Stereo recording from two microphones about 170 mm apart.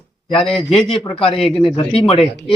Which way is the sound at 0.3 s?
5° left (ahead or behind).